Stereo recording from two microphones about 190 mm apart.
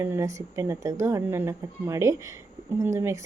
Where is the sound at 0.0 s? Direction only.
10° right (ahead or behind).